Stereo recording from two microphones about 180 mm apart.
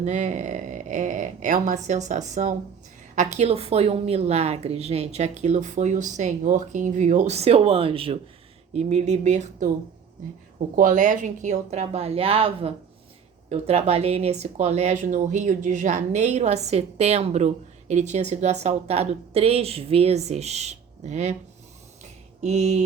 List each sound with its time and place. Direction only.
0.0 s speech: 40° right (ahead or behind)
10.8 s speech: 45° right (ahead or behind)
22.4 s a sound: 40° right (ahead or behind)